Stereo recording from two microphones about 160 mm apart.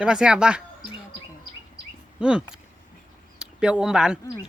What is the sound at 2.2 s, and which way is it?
Speech, 5° right (ahead or behind).